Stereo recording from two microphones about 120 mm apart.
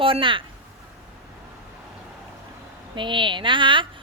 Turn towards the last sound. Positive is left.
turn(degrees=-45)  # may be behind; listen again after turning